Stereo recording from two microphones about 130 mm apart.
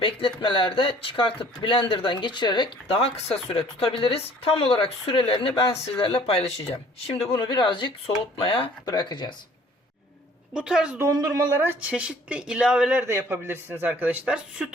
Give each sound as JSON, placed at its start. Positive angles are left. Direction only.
{"t": 0.0, "sound": "speech", "side_deg": 40}
{"t": 2.8, "sound": "speech", "side_deg": 50}
{"t": 8.9, "sound": "speech", "side_deg": 35}
{"t": 10.5, "sound": "a woman's voice", "side_deg": -5}
{"t": 10.9, "sound": "a woman's voice", "side_deg": -25}